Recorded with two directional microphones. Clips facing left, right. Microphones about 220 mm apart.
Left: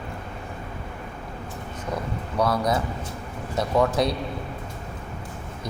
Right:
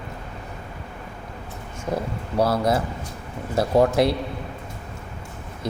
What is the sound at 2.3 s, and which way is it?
A man's voice, 25° right (ahead or behind).